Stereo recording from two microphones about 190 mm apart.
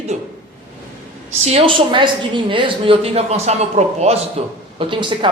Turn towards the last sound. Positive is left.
turn(degrees=-25)  # may be behind; listen again after turning